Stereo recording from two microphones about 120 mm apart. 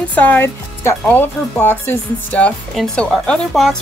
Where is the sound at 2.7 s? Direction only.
Centre (ahead or behind).